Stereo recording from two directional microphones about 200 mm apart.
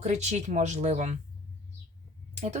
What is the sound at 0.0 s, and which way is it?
A woman's voice, 35° right (ahead or behind).